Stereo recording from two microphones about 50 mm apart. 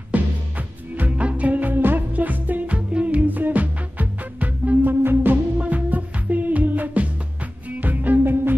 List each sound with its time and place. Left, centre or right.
0.1 s music: right
5.0 s music: right
5.6 s music: right